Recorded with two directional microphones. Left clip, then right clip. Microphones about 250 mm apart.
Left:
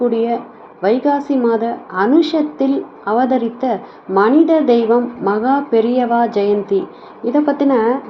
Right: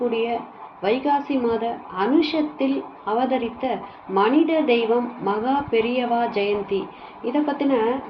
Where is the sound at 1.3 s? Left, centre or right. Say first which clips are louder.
Left 7 dB; left.